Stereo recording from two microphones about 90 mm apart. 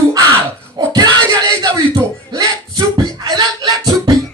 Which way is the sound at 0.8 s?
50° right (ahead or behind).